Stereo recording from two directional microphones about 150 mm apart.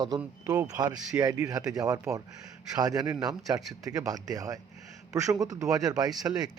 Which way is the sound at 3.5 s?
10° right (ahead or behind).